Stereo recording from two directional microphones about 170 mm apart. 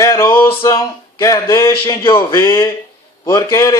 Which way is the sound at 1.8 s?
30° left (ahead or behind).